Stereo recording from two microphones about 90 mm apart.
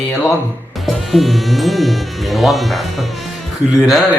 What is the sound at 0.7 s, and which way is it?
Speech, centre (ahead or behind).